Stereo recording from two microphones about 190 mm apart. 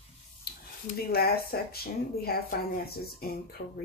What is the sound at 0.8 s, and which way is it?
Speech, 55° left (ahead or behind).